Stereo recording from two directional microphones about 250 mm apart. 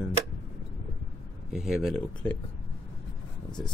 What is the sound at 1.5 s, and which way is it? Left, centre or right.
Speech, centre.